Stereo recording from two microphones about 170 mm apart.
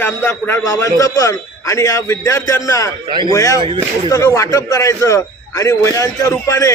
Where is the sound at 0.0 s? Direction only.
10° left (ahead or behind).